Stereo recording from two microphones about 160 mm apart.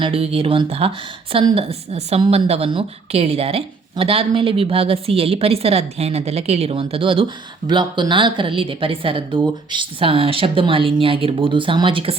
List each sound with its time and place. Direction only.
0.0 s a woman's voice: 35° right (ahead or behind)